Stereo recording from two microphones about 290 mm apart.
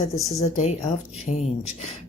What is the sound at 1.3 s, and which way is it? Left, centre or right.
Speech, left.